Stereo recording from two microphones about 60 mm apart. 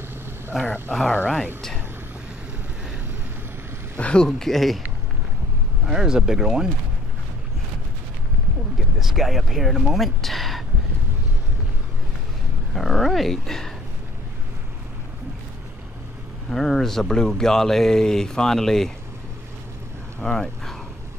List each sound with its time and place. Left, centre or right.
0.5 s speech: centre
4.0 s speech: centre
4.3 s speech: centre
5.9 s speech: centre
8.7 s speech: centre
12.7 s speech: centre
16.4 s speech: centre
20.2 s speech: centre